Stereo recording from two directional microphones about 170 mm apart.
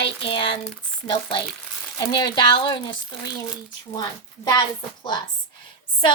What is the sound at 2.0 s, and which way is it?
Speech, 25° left (ahead or behind).